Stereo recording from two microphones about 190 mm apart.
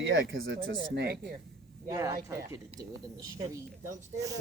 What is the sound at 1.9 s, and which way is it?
Speech, 15° right (ahead or behind).